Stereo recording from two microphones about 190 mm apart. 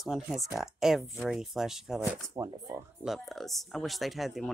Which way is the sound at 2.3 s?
20° right (ahead or behind).